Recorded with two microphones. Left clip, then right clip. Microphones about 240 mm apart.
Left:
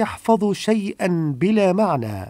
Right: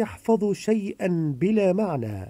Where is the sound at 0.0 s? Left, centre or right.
Left.